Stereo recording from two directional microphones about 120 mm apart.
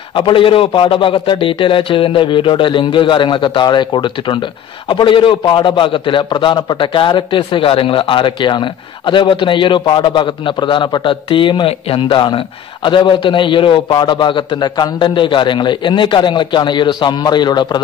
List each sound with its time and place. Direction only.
0.1 s a man's voice: 45° left (ahead or behind)